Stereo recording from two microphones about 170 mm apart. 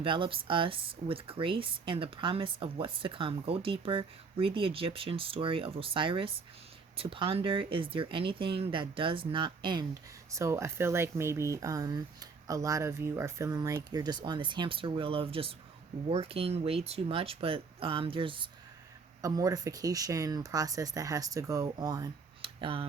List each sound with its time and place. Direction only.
0.0 s speech: 30° right (ahead or behind)
10.3 s speech: 15° right (ahead or behind); by 22.9 s 30° right (ahead or behind)